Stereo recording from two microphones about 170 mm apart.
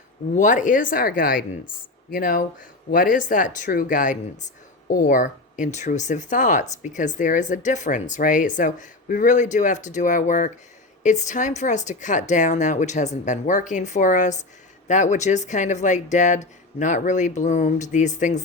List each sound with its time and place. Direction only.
0.3 s speech: 50° left (ahead or behind)